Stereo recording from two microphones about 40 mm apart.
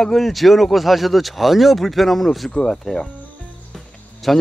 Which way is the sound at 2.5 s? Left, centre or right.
Centre.